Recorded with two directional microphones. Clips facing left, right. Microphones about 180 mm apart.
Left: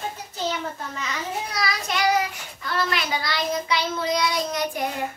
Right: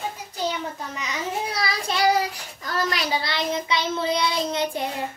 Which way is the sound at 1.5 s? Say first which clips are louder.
Right 1 dB; 30° right (ahead or behind).